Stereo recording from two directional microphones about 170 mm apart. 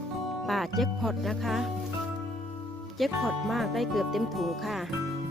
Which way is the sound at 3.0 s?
Centre (ahead or behind).